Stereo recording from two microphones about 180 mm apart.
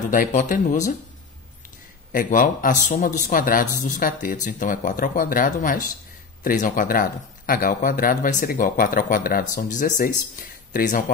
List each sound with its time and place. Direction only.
0.0 s speech: 45° left (ahead or behind)
2.1 s speech: 50° left (ahead or behind)